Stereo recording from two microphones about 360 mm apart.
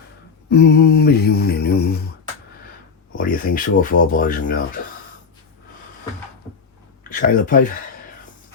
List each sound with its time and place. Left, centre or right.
0.5 s mantra: left
3.2 s speech: left
7.1 s speech: left